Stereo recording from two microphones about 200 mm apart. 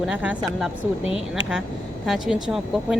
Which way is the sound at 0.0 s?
5° right (ahead or behind).